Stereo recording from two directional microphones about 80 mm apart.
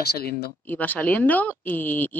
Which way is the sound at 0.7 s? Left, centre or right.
Left.